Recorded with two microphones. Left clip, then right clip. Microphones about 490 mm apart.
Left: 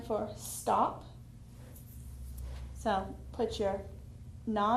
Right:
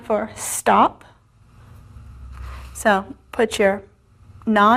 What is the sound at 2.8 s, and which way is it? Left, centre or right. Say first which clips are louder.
Speech: right 14 dB; right.